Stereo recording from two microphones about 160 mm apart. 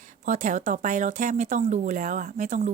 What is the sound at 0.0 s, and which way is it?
Speech, 50° right (ahead or behind).